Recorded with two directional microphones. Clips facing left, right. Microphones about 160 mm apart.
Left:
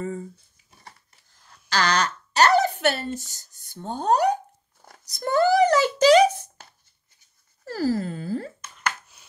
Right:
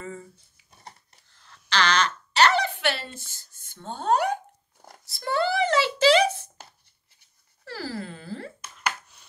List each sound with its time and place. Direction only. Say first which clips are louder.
0.0 s speech: left 7 dB; 40° left (ahead or behind)
1.7 s speech: left 1 dB; 40° left (ahead or behind)
5.0 s a sound: left 5 dB; 45° left (ahead or behind)
7.6 s wail: left 9 dB; 45° left (ahead or behind)